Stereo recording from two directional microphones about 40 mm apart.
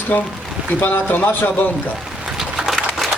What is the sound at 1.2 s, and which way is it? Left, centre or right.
Speech, left.